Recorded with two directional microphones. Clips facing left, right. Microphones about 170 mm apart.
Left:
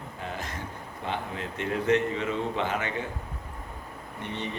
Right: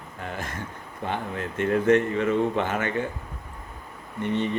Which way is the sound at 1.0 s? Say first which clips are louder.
Right 3 dB; 50° right (ahead or behind).